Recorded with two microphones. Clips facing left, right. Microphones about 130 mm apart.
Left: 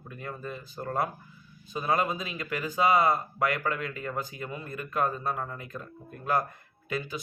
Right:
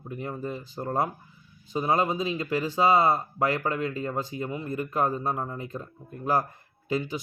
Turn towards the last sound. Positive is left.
turn(degrees=-25)  # may be behind; listen again after turning